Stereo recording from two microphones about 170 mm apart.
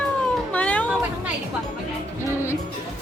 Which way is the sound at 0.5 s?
10° left (ahead or behind).